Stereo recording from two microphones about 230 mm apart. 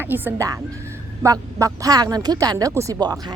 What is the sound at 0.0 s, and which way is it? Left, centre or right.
Speech, centre.